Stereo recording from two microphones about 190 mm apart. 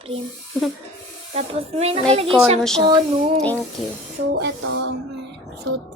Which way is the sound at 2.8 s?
25° right (ahead or behind).